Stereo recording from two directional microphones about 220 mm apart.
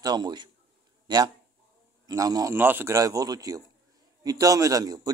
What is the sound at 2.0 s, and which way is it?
Speech, 15° right (ahead or behind).